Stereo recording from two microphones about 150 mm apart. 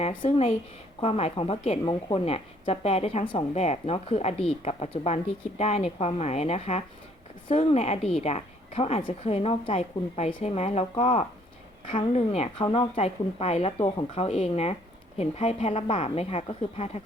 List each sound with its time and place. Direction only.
0.0 s speech: 40° left (ahead or behind)
12.6 s a woman's voice: 30° left (ahead or behind)
13.0 s speech: 45° left (ahead or behind)